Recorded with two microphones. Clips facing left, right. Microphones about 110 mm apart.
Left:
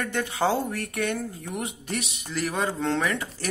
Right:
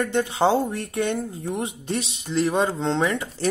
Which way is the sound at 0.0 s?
20° right (ahead or behind).